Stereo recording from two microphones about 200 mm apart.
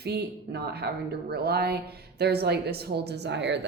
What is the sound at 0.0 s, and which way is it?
Speech, 55° right (ahead or behind).